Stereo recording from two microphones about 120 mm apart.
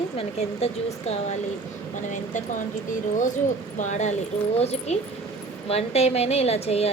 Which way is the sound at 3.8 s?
75° left (ahead or behind).